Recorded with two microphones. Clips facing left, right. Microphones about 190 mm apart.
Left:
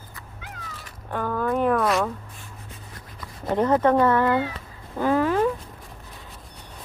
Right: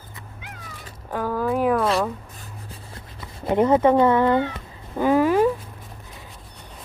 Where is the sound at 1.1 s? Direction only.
5° right (ahead or behind).